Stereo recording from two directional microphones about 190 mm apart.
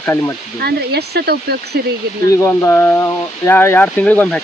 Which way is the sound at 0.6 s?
60° right (ahead or behind).